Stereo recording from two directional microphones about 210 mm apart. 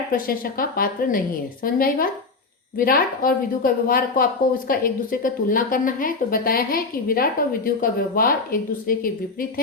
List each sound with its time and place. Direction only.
0.1 s a woman's voice: 45° left (ahead or behind)